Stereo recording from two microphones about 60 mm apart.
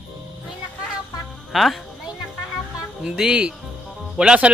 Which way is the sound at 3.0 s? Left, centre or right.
Centre.